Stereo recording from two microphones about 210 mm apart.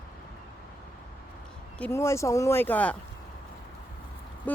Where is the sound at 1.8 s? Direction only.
10° left (ahead or behind).